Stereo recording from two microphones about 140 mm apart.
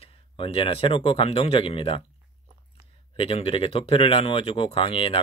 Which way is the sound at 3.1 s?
40° left (ahead or behind).